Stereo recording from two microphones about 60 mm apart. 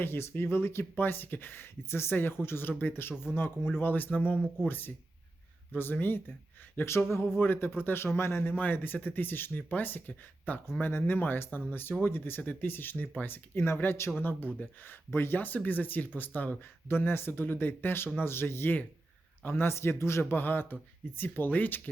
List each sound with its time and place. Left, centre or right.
0.0 s speech: left
4.3 s speech: centre
5.7 s speech: left
8.5 s a man's voice: left
20.3 s speech: left